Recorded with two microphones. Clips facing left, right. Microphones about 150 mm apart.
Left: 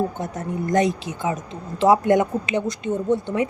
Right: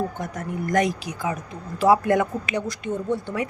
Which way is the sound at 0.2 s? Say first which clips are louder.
Left 2 dB; 25° left (ahead or behind).